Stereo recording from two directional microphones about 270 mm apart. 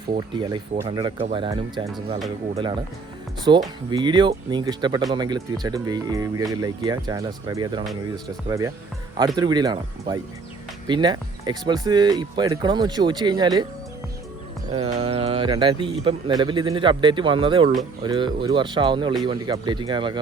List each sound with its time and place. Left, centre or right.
0.1 s speech: centre
3.5 s speech: centre
14.7 s speech: right